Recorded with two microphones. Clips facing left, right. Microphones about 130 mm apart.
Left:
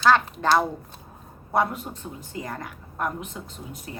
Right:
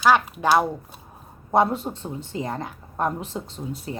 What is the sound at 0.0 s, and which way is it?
Speech, 10° right (ahead or behind).